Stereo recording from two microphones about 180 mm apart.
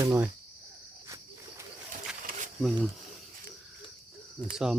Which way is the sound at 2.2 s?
45° right (ahead or behind).